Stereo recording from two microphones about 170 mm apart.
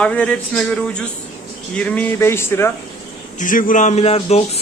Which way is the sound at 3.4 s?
50° left (ahead or behind).